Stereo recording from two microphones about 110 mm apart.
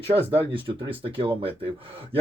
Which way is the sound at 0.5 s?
45° right (ahead or behind).